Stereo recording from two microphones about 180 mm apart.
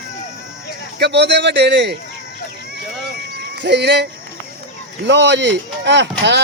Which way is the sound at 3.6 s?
70° right (ahead or behind).